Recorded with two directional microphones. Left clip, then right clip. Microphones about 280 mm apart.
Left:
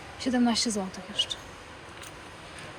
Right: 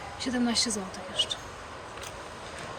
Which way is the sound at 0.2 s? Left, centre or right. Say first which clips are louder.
Left 2 dB; centre.